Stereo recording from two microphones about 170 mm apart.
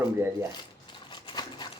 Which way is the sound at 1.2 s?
25° left (ahead or behind).